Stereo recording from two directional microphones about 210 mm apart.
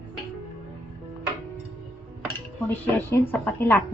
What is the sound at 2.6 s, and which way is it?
A woman's voice, 10° left (ahead or behind).